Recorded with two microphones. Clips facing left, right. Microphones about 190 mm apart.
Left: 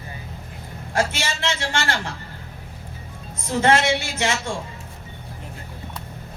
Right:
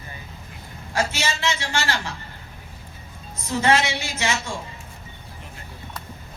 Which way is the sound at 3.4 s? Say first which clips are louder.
Left 2 dB; 50° left (ahead or behind).